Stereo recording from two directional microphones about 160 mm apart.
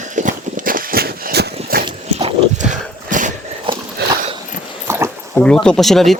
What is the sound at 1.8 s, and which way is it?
Dog, 35° right (ahead or behind).